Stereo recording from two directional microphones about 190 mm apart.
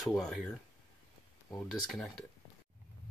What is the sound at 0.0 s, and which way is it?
Speech, centre (ahead or behind).